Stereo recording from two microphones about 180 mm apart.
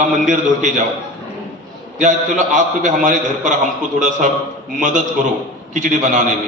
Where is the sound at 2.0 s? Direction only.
45° right (ahead or behind).